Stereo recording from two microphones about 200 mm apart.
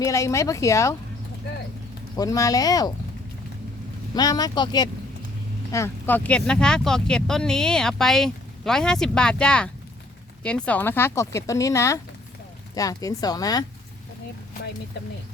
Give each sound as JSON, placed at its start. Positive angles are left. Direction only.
{"t": 0.0, "sound": "speech", "side_deg": 15}
{"t": 2.1, "sound": "speech", "side_deg": 15}
{"t": 4.1, "sound": "speech", "side_deg": 20}